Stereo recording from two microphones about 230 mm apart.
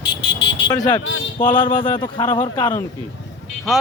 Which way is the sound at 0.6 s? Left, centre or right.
Centre.